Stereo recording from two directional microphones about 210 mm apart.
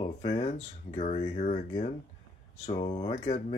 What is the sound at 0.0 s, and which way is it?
Speech, 25° left (ahead or behind).